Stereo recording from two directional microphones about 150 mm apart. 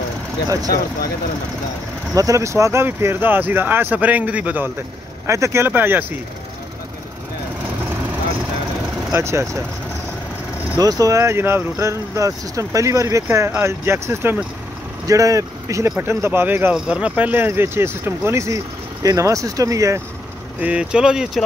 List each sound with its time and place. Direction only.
2.1 s speech: 20° right (ahead or behind)
9.1 s speech: 20° right (ahead or behind)
10.8 s speech: 25° right (ahead or behind)
20.6 s speech: 5° right (ahead or behind)